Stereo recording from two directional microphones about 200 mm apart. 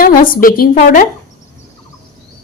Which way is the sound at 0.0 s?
45° left (ahead or behind).